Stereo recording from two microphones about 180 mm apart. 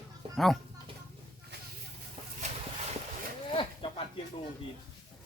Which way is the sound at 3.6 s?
30° left (ahead or behind).